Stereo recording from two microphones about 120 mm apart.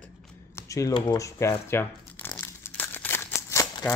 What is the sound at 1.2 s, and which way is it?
Speech, 25° left (ahead or behind).